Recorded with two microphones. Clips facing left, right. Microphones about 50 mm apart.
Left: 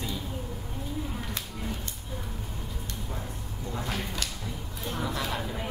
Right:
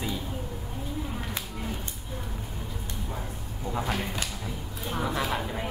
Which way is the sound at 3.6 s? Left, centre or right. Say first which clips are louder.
Right 4 dB; centre.